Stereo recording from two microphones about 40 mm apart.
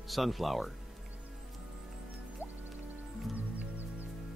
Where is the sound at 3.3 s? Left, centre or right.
Right.